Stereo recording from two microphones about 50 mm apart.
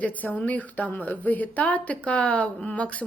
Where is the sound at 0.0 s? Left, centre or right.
Left.